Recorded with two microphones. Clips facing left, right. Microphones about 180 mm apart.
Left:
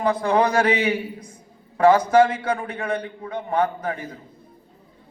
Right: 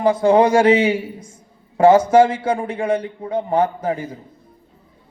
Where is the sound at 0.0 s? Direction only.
25° right (ahead or behind).